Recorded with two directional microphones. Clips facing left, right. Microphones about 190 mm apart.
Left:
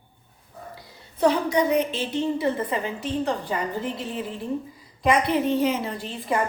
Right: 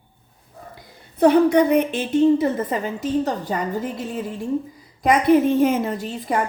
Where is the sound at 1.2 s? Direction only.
60° right (ahead or behind); by 3.6 s 40° right (ahead or behind).